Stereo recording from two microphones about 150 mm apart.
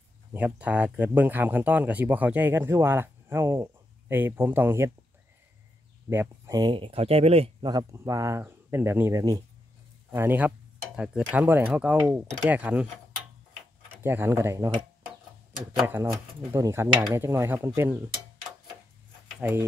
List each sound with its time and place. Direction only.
0.3 s speech: 10° right (ahead or behind)
6.0 s speech: 15° right (ahead or behind)
6.6 s speech: 35° right (ahead or behind)
7.7 s speech: 20° right (ahead or behind)
10.1 s speech: 10° right (ahead or behind)
14.0 s speech: 15° right (ahead or behind)
15.9 s speech: 15° right (ahead or behind)
19.4 s speech: 15° right (ahead or behind)